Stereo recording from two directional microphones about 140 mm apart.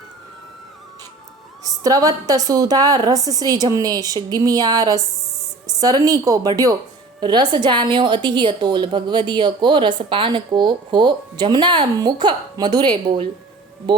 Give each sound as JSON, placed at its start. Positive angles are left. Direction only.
{"t": 1.6, "sound": "a woman's voice", "side_deg": -25}